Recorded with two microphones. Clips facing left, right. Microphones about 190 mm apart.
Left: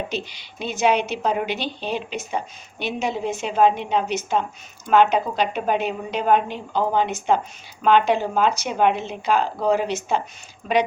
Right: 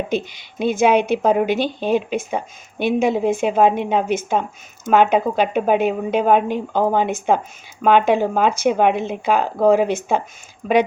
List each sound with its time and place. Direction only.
0.1 s a woman's voice: 50° right (ahead or behind)